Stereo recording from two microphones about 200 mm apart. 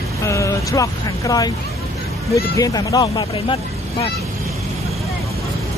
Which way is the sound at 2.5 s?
20° left (ahead or behind).